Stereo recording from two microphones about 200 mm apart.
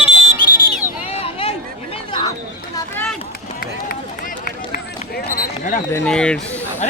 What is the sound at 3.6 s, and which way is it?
Run, 45° left (ahead or behind).